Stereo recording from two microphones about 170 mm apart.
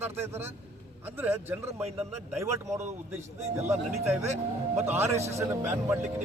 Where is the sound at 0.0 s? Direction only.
15° right (ahead or behind).